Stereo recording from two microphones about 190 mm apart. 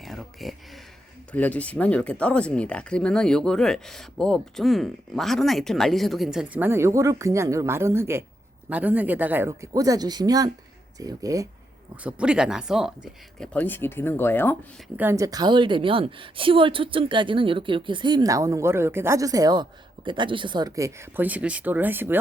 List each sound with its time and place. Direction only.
0.0 s speech: centre (ahead or behind); by 11.4 s 15° right (ahead or behind)
12.0 s speech: 5° right (ahead or behind)
13.4 s speech: 5° left (ahead or behind)
14.9 s a woman's voice: 15° right (ahead or behind)